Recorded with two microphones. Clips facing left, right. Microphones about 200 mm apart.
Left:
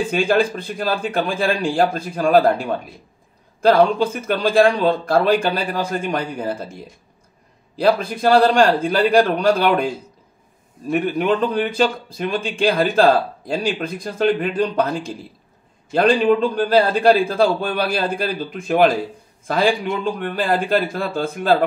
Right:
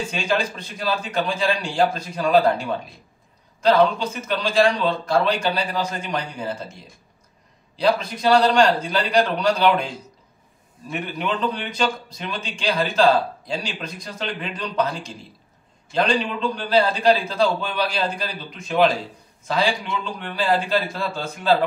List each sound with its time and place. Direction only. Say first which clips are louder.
0.1 s a man's voice: left 8 dB; 55° left (ahead or behind)
7.8 s a man's voice: left 3 dB; 50° left (ahead or behind)
10.9 s a man's voice: left 8 dB; 50° left (ahead or behind)